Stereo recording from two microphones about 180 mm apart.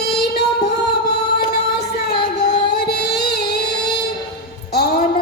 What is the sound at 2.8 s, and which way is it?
Music, 65° left (ahead or behind).